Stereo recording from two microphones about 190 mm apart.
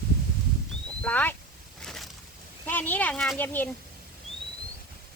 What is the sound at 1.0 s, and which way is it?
Speech, 10° left (ahead or behind).